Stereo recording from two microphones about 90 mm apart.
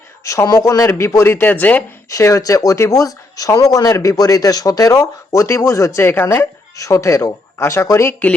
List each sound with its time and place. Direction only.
0.3 s speech: 40° left (ahead or behind); by 1.8 s 20° left (ahead or behind)
2.0 s speech: 40° left (ahead or behind)
6.7 s speech: 35° left (ahead or behind)